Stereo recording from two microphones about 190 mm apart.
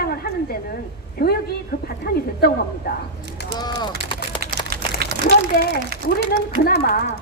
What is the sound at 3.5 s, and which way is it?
Speech, 20° left (ahead or behind).